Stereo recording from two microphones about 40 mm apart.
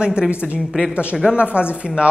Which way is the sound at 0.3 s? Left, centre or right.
Right.